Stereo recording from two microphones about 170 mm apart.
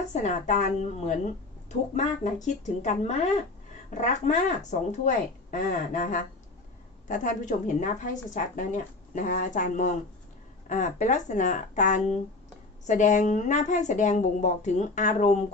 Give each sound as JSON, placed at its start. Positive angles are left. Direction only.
{"t": 0.1, "sound": "a woman's voice", "side_deg": 45}